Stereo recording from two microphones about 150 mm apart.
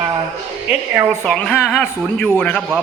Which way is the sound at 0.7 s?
15° right (ahead or behind).